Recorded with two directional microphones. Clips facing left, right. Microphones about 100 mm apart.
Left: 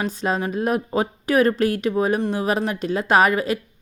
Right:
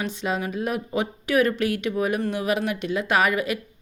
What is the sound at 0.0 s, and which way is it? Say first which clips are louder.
A woman's voice: left 4 dB; 40° left (ahead or behind).